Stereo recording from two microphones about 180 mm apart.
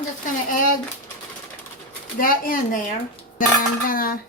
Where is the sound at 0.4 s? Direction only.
50° left (ahead or behind).